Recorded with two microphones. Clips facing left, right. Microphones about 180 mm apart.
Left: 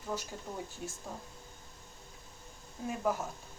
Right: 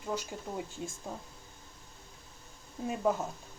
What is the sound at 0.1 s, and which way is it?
Speech, 15° right (ahead or behind).